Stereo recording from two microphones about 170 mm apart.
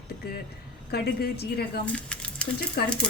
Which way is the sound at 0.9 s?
65° left (ahead or behind).